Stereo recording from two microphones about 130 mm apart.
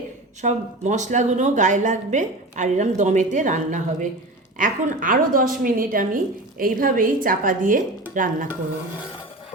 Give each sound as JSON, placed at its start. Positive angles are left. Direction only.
{"t": 0.4, "sound": "a woman's voice", "side_deg": -65}
{"t": 4.5, "sound": "a woman's voice", "side_deg": -90}